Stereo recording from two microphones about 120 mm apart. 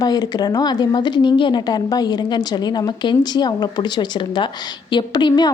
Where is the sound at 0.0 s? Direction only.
35° left (ahead or behind).